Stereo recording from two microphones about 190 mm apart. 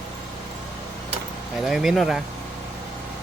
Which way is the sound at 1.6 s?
Centre (ahead or behind).